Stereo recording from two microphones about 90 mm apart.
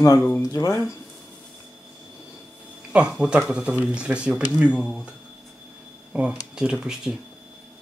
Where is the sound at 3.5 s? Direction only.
10° right (ahead or behind).